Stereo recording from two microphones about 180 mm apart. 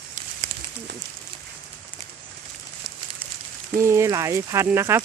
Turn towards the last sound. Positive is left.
turn(degrees=-15)  # may be behind; listen again after turning